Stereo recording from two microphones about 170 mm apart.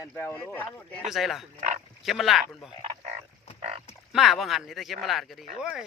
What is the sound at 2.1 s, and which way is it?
Speech, centre (ahead or behind).